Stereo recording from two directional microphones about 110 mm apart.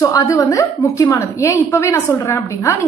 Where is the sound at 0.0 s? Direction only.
30° left (ahead or behind).